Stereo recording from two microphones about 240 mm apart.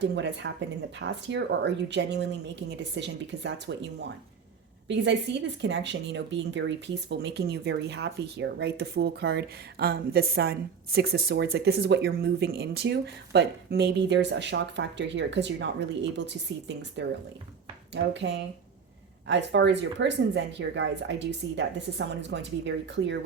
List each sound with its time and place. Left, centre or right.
0.0 s speech: right
5.3 s speech: right